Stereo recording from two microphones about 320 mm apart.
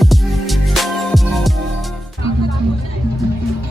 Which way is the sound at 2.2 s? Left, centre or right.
Centre.